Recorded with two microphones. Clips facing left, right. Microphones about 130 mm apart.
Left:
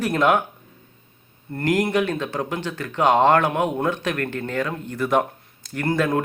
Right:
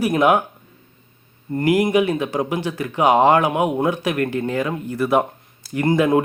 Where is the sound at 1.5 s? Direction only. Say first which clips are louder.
Right 4 dB; 10° right (ahead or behind).